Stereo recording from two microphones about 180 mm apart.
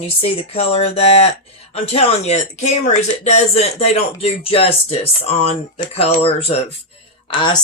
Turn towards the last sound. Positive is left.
turn(degrees=25)  # may be behind; listen again after turning